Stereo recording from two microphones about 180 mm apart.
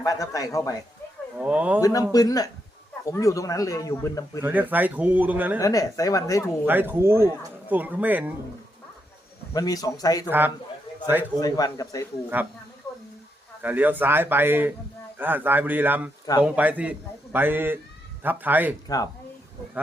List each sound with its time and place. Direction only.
0.0 s speech: 20° left (ahead or behind)
1.4 s a man's voice: 5° right (ahead or behind)
1.8 s speech: 20° left (ahead or behind)
4.4 s a man's voice: 10° right (ahead or behind)
5.5 s speech: 20° left (ahead or behind)
6.7 s a man's voice: 10° right (ahead or behind)
9.5 s speech: 20° left (ahead or behind)
10.2 s a man's voice: 10° right (ahead or behind)
11.3 s speech: 20° left (ahead or behind)
13.6 s a man's voice: 10° right (ahead or behind)
18.9 s speech: 20° left (ahead or behind)